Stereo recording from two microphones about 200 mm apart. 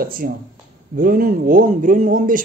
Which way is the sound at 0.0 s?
45° right (ahead or behind).